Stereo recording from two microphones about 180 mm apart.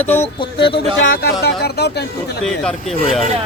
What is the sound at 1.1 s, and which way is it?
Speech, 60° left (ahead or behind).